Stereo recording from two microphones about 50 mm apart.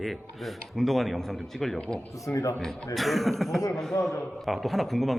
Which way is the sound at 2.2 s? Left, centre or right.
Left.